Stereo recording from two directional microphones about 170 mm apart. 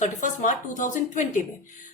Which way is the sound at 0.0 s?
45° left (ahead or behind).